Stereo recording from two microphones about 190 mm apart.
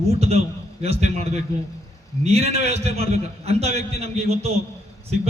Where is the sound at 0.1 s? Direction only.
35° right (ahead or behind).